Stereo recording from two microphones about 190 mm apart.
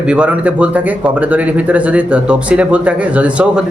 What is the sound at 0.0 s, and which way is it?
Speech, 5° right (ahead or behind).